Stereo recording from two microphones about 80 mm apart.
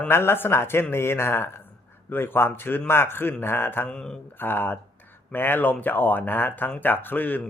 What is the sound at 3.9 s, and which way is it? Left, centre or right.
Speech, centre.